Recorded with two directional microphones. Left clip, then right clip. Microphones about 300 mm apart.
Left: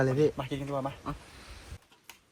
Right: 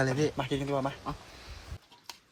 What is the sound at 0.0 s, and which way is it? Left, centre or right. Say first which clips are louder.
Speech: left 3 dB; centre.